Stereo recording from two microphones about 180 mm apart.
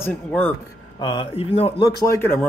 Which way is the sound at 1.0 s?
25° left (ahead or behind).